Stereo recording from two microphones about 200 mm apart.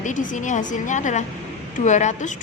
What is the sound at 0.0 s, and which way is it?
Speech, 40° left (ahead or behind).